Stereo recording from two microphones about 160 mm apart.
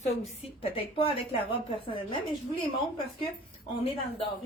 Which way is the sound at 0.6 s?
35° left (ahead or behind).